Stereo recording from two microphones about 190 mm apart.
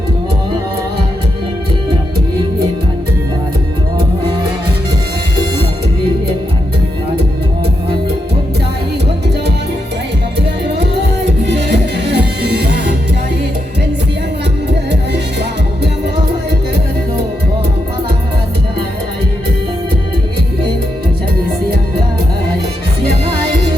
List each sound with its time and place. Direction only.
10.8 s music: 65° right (ahead or behind)